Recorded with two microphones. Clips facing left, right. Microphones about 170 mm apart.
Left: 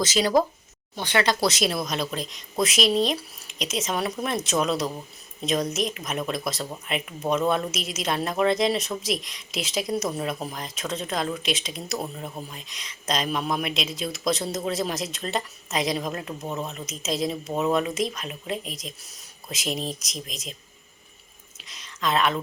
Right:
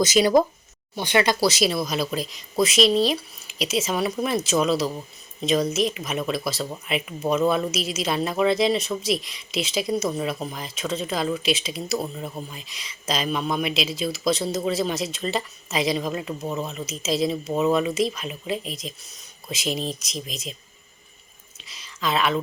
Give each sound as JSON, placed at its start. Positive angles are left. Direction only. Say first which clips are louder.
{"t": 0.0, "sound": "speech", "louder": "right 4 dB", "side_deg": -15}
{"t": 1.5, "sound": "speech", "louder": "right 3 dB", "side_deg": 0}
{"t": 21.6, "sound": "a sound", "louder": "even", "side_deg": 0}